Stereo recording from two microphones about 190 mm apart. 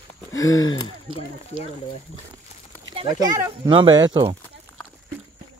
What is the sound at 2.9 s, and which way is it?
Speech, 20° right (ahead or behind).